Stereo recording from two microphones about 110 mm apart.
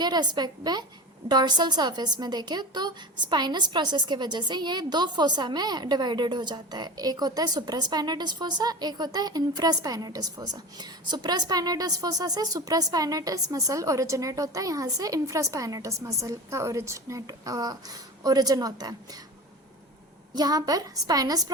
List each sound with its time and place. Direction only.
0.0 s a woman's voice: 40° right (ahead or behind)
20.3 s a woman's voice: 35° right (ahead or behind)